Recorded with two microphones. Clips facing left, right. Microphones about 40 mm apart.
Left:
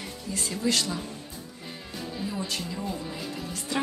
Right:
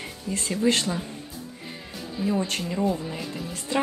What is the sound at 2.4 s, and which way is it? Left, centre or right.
Speech, right.